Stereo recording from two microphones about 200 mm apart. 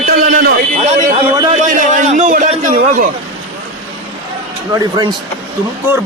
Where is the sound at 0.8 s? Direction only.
35° right (ahead or behind).